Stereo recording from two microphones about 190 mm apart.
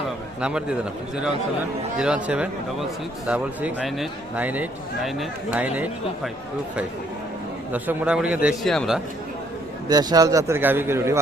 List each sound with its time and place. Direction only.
0.4 s a man's voice: 5° right (ahead or behind)
7.7 s a man's voice: 5° right (ahead or behind)
9.9 s speech: 20° right (ahead or behind)